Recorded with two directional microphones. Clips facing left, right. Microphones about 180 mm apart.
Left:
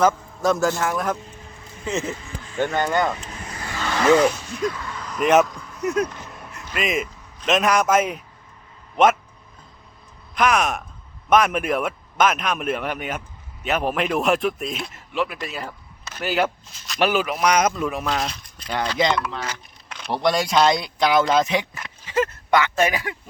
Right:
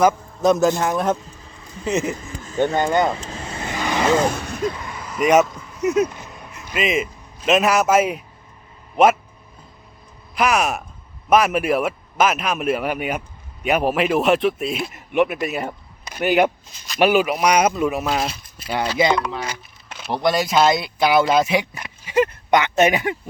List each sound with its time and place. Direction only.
0.4 s a man's voice: 20° right (ahead or behind)
2.2 s a sound: 40° right (ahead or behind)
2.6 s a man's voice: 25° right (ahead or behind)
3.2 s vehicle: 25° right (ahead or behind)
4.3 s speech: 60° right (ahead or behind)
4.6 s speech: 25° right (ahead or behind)
4.9 s a sound: 10° right (ahead or behind)
6.7 s speech: 5° right (ahead or behind)
10.3 s speech: 5° right (ahead or behind)
14.9 s speech: 20° right (ahead or behind)
15.4 s a sound: 20° right (ahead or behind)
16.1 s speech: 15° right (ahead or behind)